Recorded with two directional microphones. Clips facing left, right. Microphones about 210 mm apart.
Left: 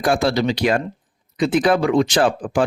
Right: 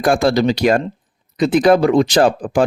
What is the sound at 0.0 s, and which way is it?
Speech, 45° right (ahead or behind).